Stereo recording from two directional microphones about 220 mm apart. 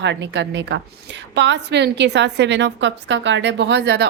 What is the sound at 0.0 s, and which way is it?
A woman's voice, 55° right (ahead or behind).